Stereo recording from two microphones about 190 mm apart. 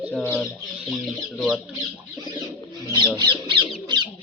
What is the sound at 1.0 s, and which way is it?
Chicken, centre (ahead or behind).